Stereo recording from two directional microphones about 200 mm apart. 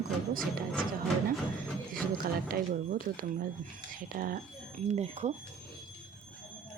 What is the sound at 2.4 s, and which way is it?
Speech, 45° right (ahead or behind).